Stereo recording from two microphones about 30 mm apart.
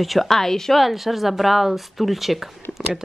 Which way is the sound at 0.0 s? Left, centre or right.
Centre.